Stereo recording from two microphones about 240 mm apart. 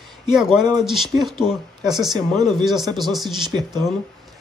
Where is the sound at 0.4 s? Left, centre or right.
Centre.